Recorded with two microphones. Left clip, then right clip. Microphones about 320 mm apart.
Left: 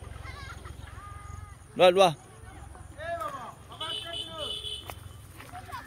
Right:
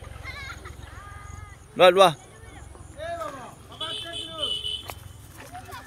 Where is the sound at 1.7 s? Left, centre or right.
Centre.